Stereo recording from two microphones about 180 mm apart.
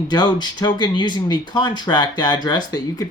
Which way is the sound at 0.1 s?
25° left (ahead or behind).